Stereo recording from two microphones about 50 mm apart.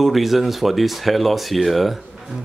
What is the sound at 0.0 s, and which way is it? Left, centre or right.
A man's voice, centre.